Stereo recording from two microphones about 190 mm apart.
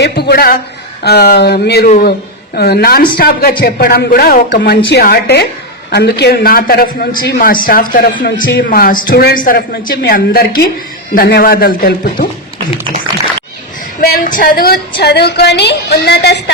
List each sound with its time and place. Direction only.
0.0 s a woman's voice: 55° left (ahead or behind)
1.9 s a man's voice: 45° left (ahead or behind)
14.0 s a woman's voice: 45° left (ahead or behind)